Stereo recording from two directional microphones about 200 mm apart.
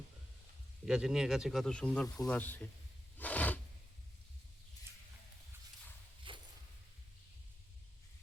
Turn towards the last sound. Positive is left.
turn(degrees=-25)  # may be behind; listen again after turning